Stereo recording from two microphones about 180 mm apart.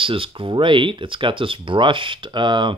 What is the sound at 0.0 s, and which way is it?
Speech, 30° right (ahead or behind).